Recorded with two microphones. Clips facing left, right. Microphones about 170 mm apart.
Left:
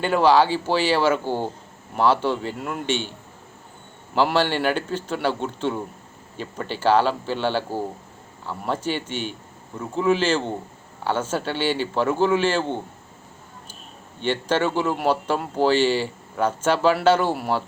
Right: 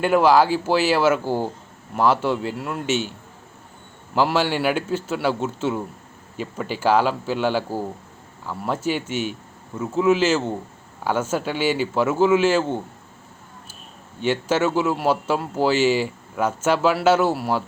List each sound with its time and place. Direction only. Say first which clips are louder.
0.0 s a man's voice: right 1 dB; 5° right (ahead or behind)
4.1 s a man's voice: even; 5° right (ahead or behind)
14.2 s speech: right 2 dB; 5° right (ahead or behind)